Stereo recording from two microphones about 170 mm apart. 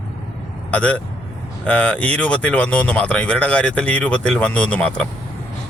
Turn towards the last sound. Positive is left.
turn(degrees=5)  # may be behind; listen again after turning